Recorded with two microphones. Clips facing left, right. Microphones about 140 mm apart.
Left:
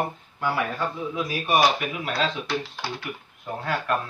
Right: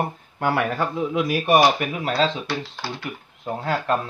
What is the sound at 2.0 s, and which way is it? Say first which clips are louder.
Speech: right 6 dB; 35° right (ahead or behind).